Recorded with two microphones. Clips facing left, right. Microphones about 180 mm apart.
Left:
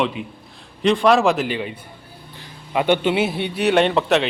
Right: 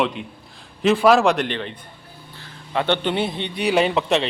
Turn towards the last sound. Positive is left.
turn(degrees=0)  # may be behind; listen again after turning